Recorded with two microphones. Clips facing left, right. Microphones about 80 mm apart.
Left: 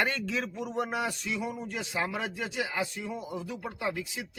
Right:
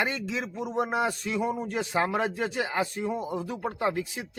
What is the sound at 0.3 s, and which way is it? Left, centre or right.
A man's voice, right.